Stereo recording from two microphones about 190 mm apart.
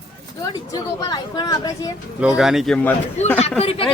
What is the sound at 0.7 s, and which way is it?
Speech, 20° left (ahead or behind).